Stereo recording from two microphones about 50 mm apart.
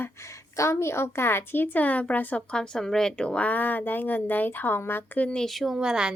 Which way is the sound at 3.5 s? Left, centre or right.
Left.